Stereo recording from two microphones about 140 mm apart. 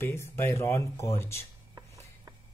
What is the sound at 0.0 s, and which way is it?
Speech, 20° left (ahead or behind).